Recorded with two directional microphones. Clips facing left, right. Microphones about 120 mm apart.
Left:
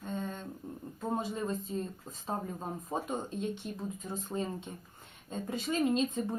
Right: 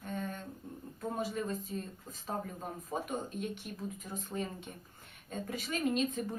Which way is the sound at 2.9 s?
25° left (ahead or behind).